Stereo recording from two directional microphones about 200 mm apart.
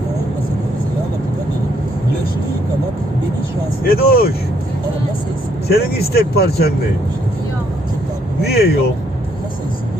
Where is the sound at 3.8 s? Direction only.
50° left (ahead or behind).